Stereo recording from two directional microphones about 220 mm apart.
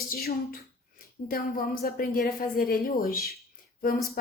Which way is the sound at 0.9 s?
40° left (ahead or behind).